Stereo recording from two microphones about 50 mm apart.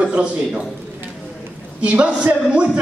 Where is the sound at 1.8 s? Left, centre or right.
Right.